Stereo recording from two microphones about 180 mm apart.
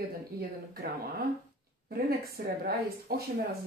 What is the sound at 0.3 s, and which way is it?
Speech, 60° right (ahead or behind).